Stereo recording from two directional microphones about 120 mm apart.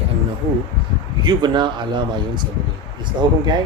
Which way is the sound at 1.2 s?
40° right (ahead or behind).